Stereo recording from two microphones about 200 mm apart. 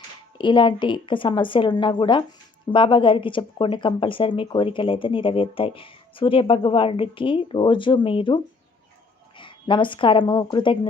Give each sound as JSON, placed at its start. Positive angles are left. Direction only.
{"t": 0.3, "sound": "speech", "side_deg": 25}